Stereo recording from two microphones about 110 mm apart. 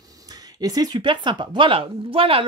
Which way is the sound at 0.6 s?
35° right (ahead or behind).